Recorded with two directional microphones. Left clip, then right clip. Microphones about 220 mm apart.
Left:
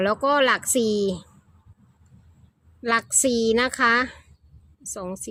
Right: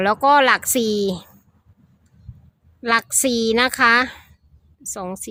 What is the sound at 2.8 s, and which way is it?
A woman's voice, 10° right (ahead or behind).